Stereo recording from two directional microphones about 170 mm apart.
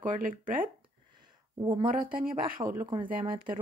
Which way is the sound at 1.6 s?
25° right (ahead or behind).